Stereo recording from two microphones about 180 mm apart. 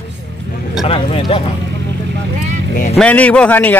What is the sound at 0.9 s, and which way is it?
Speech, 30° left (ahead or behind).